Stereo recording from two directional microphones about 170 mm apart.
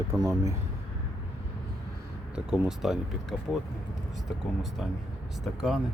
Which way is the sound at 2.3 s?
5° right (ahead or behind).